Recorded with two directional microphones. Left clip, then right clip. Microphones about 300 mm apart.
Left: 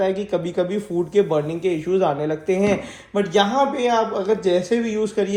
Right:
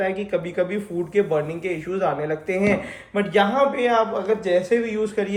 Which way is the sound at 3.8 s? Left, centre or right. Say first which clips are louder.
Left 1 dB; centre.